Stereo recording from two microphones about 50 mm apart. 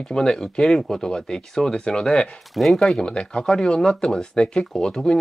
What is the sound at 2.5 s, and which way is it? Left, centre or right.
Speech, centre.